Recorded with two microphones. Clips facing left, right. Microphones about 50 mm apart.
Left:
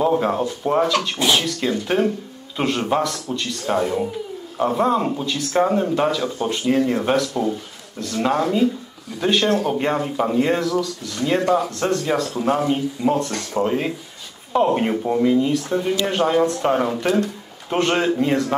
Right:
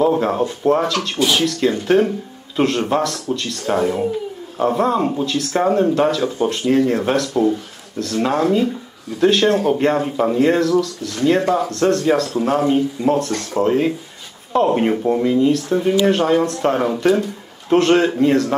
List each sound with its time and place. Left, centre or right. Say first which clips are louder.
0.0 s a sound: right 2 dB; centre
0.7 s speech: right 1 dB; centre
9.4 s speech: right 4 dB; right
9.8 s speech: right 4 dB; centre
11.3 s speech: left 3 dB; centre
11.7 s speech: right 5 dB; centre